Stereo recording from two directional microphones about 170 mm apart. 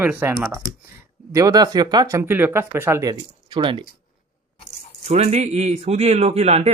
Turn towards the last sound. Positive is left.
turn(degrees=-40)  # may be behind; listen again after turning